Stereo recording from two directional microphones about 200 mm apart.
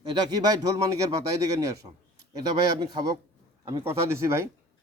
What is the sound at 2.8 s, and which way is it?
A man's voice, 20° right (ahead or behind).